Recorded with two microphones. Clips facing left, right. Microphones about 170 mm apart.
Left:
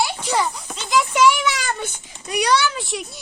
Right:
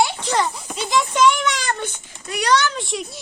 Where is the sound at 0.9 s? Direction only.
5° left (ahead or behind).